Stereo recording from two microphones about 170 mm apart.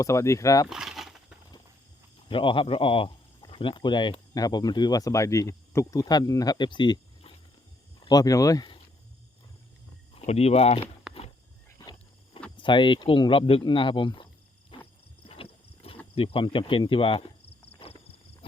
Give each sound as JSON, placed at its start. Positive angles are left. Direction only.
{"t": 0.0, "sound": "speech", "side_deg": 15}
{"t": 0.7, "sound": "a sound", "side_deg": -5}
{"t": 2.3, "sound": "speech", "side_deg": 30}
{"t": 10.2, "sound": "speech", "side_deg": 40}
{"t": 11.1, "sound": "a sound", "side_deg": 0}
{"t": 12.5, "sound": "speech", "side_deg": 30}
{"t": 14.7, "sound": "wild animals", "side_deg": 30}
{"t": 16.1, "sound": "speech", "side_deg": 35}
{"t": 17.7, "sound": "horse", "side_deg": 35}